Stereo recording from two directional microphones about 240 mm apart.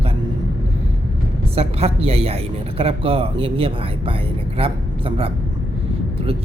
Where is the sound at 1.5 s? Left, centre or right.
Right.